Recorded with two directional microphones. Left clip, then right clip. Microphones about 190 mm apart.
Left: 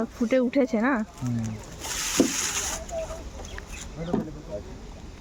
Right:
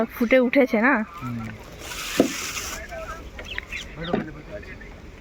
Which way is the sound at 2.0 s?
25° left (ahead or behind).